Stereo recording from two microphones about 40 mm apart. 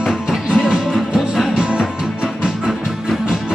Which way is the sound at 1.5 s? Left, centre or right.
Right.